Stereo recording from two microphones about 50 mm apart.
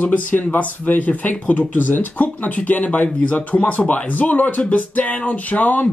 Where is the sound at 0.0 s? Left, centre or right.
Left.